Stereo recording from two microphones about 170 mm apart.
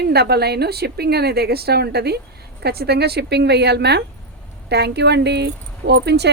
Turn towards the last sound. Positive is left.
turn(degrees=-80)